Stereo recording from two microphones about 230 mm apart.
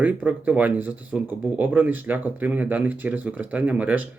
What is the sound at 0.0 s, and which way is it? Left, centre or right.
Speech, centre.